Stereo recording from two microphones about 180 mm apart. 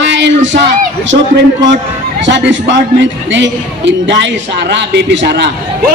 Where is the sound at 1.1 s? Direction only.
60° right (ahead or behind).